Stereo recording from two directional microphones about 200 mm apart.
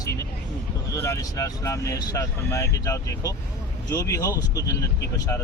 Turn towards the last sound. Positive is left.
turn(degrees=20)  # may be behind; listen again after turning